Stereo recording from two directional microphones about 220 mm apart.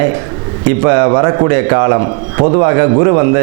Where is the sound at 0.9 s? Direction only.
25° right (ahead or behind).